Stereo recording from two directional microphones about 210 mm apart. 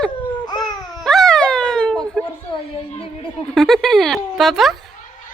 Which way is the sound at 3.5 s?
Centre (ahead or behind).